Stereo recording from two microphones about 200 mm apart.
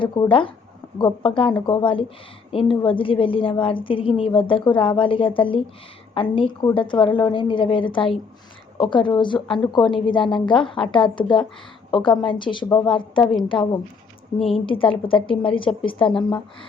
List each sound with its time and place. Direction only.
0.0 s a woman's voice: 25° left (ahead or behind)
14.4 s a woman's voice: 25° left (ahead or behind)